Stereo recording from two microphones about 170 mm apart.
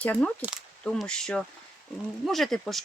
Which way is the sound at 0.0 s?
10° left (ahead or behind).